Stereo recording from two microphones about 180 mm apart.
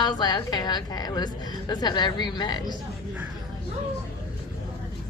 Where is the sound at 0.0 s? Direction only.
25° left (ahead or behind).